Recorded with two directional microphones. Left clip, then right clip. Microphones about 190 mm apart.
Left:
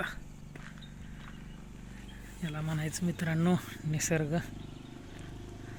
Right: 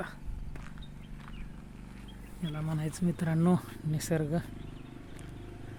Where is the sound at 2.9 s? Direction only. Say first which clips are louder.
Right 2 dB; 25° right (ahead or behind).